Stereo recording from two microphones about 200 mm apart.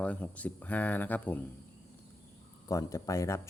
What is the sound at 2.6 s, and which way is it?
Speech, 15° left (ahead or behind).